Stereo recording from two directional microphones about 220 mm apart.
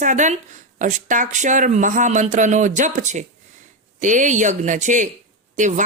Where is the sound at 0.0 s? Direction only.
35° right (ahead or behind).